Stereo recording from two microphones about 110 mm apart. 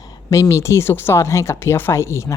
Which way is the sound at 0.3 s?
30° left (ahead or behind).